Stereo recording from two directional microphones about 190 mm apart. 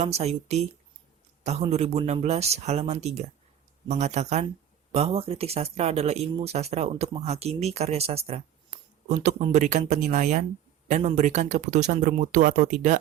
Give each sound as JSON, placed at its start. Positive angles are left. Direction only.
{"t": 0.0, "sound": "speech", "side_deg": -35}